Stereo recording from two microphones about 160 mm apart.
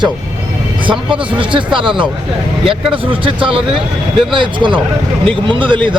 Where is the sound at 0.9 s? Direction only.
30° right (ahead or behind).